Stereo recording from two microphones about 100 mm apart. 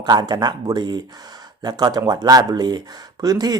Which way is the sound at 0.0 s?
45° right (ahead or behind).